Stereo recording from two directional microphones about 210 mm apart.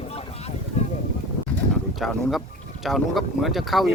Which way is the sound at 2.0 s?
Centre (ahead or behind).